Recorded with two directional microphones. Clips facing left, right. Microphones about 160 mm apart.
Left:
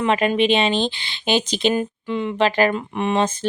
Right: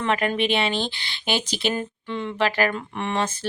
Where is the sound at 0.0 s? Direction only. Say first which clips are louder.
Left 5 dB; 20° left (ahead or behind).